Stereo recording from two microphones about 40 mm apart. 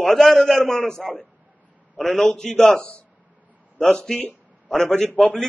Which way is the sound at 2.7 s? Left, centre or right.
Left.